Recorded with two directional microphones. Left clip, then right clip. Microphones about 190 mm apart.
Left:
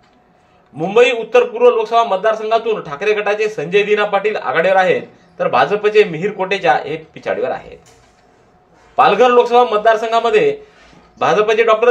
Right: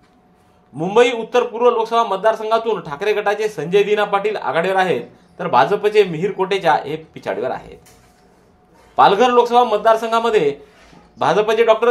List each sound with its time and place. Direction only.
0.7 s a man's voice: 35° right (ahead or behind)
8.9 s a man's voice: 35° right (ahead or behind)